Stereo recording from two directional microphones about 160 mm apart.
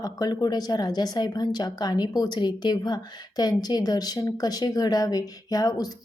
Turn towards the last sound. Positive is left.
turn(degrees=25)  # may be behind; listen again after turning